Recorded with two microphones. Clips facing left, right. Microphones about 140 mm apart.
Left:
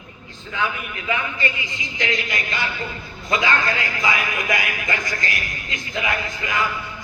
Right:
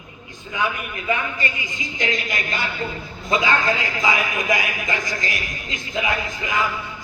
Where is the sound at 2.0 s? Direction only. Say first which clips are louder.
Even; 25° right (ahead or behind).